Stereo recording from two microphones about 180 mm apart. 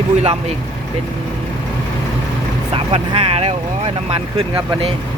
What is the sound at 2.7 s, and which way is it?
Speech, 35° right (ahead or behind).